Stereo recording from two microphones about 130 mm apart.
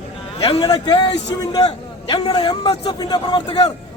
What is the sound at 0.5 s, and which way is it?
A man's voice, 30° left (ahead or behind).